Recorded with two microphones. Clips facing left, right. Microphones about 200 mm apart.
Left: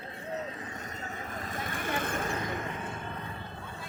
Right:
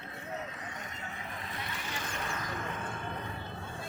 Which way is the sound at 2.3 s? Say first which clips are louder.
Left 5 dB; 30° left (ahead or behind).